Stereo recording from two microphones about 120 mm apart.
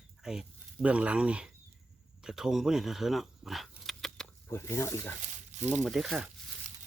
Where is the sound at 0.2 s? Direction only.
5° right (ahead or behind).